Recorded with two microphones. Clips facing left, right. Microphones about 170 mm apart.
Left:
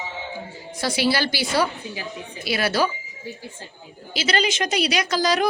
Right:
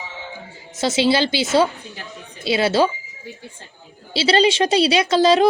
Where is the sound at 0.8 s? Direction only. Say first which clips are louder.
Right 5 dB; 20° right (ahead or behind).